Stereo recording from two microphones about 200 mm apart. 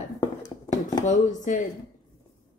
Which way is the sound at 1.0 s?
35° left (ahead or behind).